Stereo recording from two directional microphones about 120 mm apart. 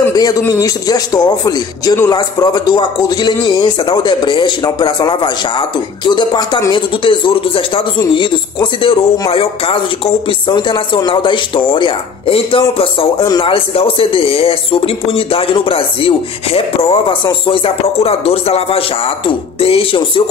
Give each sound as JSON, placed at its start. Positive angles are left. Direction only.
{"t": 0.1, "sound": "a man's voice", "side_deg": 30}